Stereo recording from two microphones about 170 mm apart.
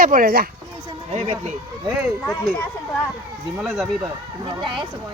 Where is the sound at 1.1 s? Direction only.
45° right (ahead or behind).